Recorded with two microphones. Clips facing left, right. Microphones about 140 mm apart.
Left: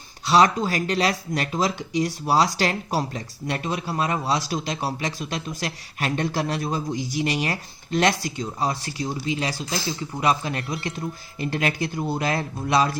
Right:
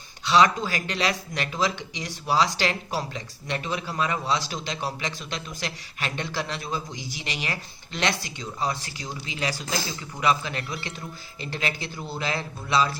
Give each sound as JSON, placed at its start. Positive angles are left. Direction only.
{"t": 0.3, "sound": "a man's voice", "side_deg": 40}